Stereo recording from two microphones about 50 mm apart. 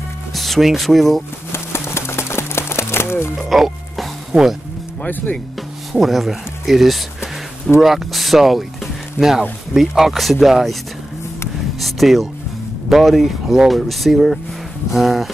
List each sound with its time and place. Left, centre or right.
0.3 s speech: centre
1.5 s a sound: left
3.3 s music: centre
5.0 s speech: left
5.9 s speech: centre
11.8 s speech: centre